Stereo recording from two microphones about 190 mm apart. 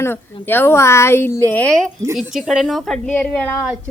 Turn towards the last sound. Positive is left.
turn(degrees=10)  # may be behind; listen again after turning